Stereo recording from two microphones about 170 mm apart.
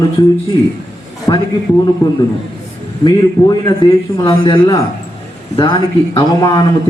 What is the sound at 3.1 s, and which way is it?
A man's voice, 30° left (ahead or behind).